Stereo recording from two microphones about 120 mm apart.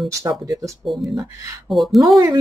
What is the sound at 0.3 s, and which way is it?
Speech, 35° right (ahead or behind).